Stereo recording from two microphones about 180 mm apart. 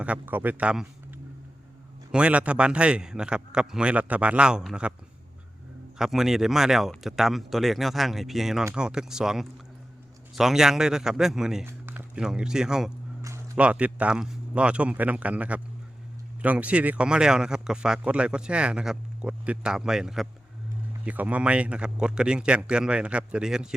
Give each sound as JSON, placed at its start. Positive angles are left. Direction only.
{"t": 0.0, "sound": "speech", "side_deg": -10}
{"t": 6.0, "sound": "speech", "side_deg": 0}